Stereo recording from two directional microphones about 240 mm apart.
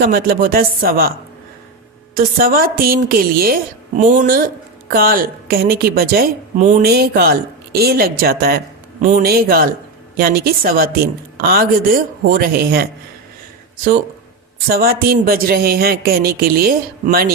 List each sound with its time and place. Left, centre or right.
0.0 s a woman's voice: right
2.1 s a woman's voice: right
14.7 s a woman's voice: right